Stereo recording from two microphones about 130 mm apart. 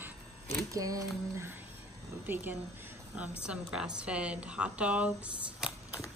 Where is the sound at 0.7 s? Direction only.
25° right (ahead or behind).